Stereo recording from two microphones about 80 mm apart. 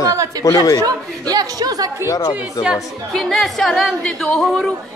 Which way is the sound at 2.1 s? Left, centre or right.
Left.